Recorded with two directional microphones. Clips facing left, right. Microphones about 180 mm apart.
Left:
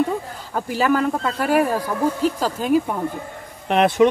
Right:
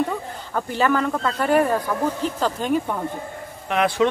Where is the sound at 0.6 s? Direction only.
10° left (ahead or behind).